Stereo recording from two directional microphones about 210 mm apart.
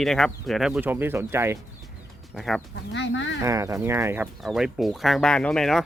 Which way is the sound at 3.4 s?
15° right (ahead or behind).